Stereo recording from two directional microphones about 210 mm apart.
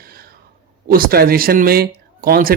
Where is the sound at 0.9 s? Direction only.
45° right (ahead or behind).